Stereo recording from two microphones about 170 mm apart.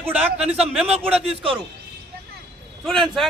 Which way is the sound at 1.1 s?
35° right (ahead or behind).